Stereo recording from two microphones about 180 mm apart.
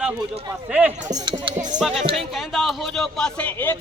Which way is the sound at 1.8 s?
Centre (ahead or behind).